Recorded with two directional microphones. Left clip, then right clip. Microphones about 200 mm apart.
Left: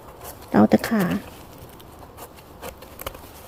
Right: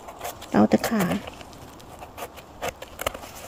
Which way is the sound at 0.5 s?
15° left (ahead or behind).